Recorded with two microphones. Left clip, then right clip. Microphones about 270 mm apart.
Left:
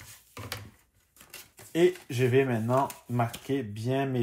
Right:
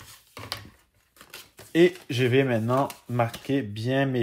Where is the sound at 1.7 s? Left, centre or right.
Right.